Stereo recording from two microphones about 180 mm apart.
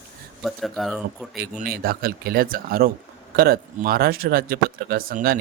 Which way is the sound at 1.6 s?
55° right (ahead or behind).